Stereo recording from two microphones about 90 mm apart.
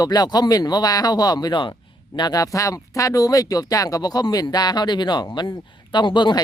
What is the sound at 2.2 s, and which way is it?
Speech, 45° left (ahead or behind).